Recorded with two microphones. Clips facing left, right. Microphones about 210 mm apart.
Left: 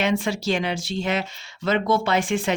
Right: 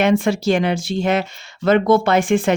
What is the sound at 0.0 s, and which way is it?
A woman's voice, 50° right (ahead or behind).